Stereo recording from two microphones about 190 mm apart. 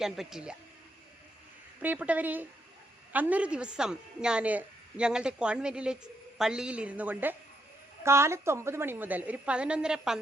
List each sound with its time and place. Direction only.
0.0 s a woman's voice: centre (ahead or behind)
1.8 s a woman's voice: 10° right (ahead or behind)